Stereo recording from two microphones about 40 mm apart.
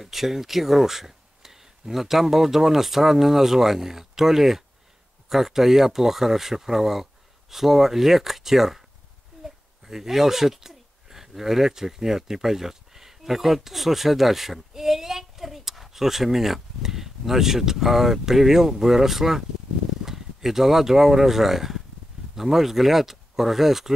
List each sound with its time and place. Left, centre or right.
0.0 s speech: centre